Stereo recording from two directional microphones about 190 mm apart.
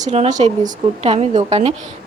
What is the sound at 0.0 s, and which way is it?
A woman's voice, 40° right (ahead or behind).